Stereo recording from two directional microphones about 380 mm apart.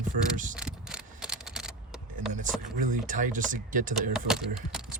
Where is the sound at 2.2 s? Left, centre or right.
Centre.